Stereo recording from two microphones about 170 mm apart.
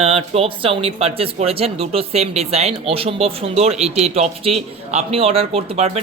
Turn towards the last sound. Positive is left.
turn(degrees=-40)  # may be behind; listen again after turning